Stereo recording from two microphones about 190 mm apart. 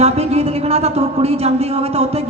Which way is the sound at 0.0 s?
35° right (ahead or behind).